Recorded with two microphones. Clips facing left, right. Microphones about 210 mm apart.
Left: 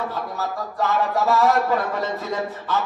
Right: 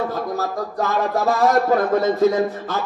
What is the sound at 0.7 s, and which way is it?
A man's voice, 45° right (ahead or behind).